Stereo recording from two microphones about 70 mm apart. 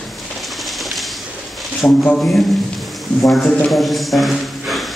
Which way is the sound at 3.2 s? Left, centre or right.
Centre.